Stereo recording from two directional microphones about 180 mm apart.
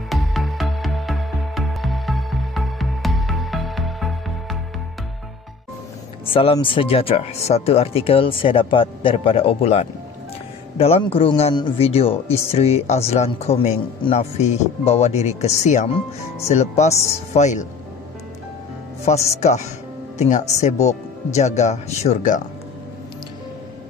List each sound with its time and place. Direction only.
0.1 s music: centre (ahead or behind)
6.3 s speech: 30° left (ahead or behind)
19.0 s speech: 35° left (ahead or behind)